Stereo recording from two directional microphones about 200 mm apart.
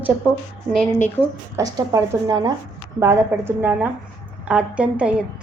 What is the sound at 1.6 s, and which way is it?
A woman's voice, 20° right (ahead or behind).